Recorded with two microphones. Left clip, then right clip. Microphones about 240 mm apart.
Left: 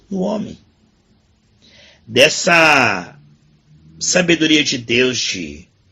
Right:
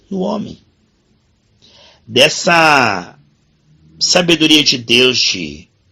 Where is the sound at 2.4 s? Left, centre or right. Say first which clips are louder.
Right 1 dB; centre.